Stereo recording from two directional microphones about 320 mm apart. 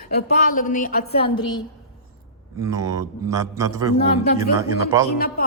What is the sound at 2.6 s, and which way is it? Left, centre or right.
A man's voice, centre.